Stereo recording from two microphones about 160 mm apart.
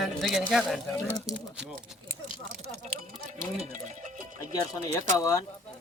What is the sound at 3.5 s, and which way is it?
Speech, 40° right (ahead or behind).